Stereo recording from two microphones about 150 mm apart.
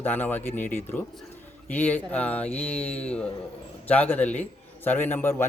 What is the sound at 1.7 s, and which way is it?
Speech, 10° left (ahead or behind).